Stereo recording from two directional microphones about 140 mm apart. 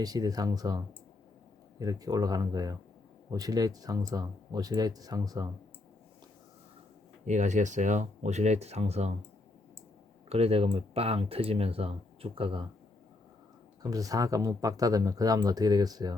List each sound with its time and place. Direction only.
0.0 s speech: 25° right (ahead or behind)
1.8 s speech: 25° right (ahead or behind)
7.3 s speech: 60° right (ahead or behind)
10.2 s speech: 45° right (ahead or behind)
13.9 s speech: 25° right (ahead or behind)